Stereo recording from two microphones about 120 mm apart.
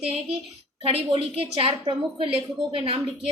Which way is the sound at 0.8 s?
50° right (ahead or behind).